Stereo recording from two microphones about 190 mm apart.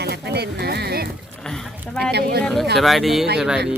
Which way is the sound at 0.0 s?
60° right (ahead or behind).